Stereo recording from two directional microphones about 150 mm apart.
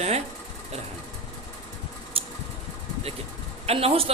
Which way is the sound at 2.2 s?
40° right (ahead or behind).